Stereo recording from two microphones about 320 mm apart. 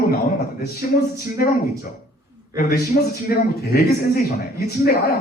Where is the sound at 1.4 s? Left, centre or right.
Left.